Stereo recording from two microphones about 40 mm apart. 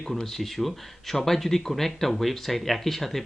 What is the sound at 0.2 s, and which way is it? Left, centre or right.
Speech, centre.